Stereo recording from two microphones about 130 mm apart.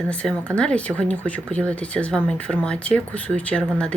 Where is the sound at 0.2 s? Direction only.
10° left (ahead or behind).